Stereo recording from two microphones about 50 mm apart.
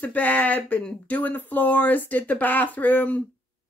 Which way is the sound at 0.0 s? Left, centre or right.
Left.